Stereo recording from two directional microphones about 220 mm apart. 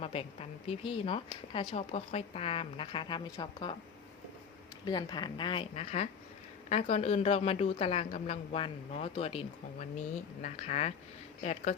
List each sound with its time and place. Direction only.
0.0 s speech: 25° left (ahead or behind)
4.9 s speech: 20° left (ahead or behind)
10.4 s speech: 30° left (ahead or behind)